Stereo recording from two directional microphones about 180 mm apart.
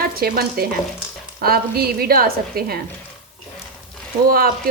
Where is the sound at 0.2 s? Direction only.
55° right (ahead or behind).